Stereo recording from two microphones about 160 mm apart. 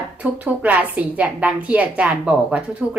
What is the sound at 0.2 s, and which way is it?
A woman's voice, 10° right (ahead or behind).